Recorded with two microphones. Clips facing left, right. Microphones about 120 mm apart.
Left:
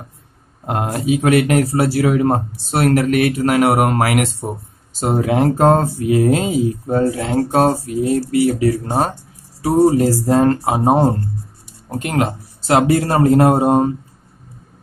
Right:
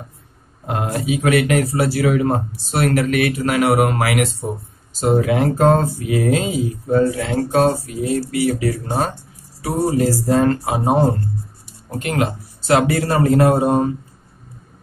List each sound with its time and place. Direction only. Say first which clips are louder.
0.7 s speech: left 3 dB; 45° left (ahead or behind)
12.1 s speech: left 1 dB; 35° left (ahead or behind)